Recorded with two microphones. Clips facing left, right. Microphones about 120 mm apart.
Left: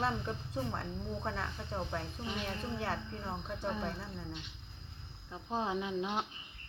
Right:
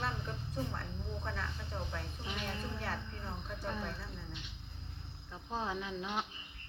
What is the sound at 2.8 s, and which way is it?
Speech, 25° left (ahead or behind).